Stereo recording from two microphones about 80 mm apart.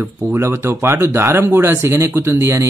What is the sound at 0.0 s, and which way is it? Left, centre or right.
Speech, right.